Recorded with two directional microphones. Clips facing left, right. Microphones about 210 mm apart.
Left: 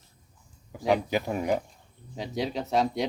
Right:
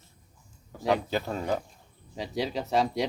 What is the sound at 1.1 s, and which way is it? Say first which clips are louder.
Speech: left 2 dB; 15° left (ahead or behind).